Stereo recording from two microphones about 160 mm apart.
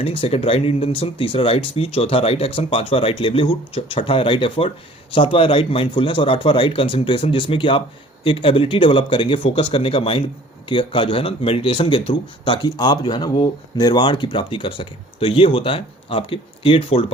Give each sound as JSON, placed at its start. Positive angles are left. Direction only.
{"t": 0.0, "sound": "speech", "side_deg": 35}